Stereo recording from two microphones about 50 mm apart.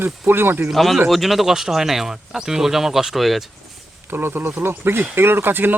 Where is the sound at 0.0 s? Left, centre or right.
Right.